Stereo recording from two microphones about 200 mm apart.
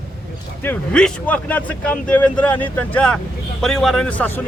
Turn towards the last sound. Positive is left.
turn(degrees=10)  # may be behind; listen again after turning